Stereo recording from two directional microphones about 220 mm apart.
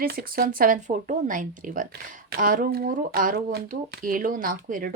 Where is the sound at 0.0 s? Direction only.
40° right (ahead or behind).